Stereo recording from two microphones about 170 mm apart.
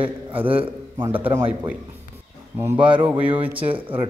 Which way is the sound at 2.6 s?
10° right (ahead or behind).